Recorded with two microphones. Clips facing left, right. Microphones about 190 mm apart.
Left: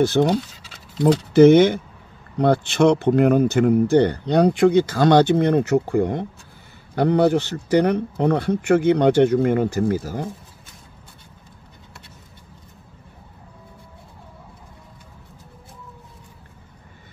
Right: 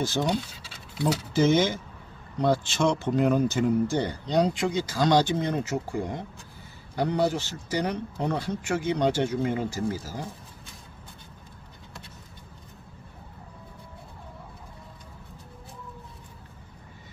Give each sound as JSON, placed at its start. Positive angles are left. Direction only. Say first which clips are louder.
{"t": 0.0, "sound": "speech", "louder": "left 9 dB", "side_deg": 60}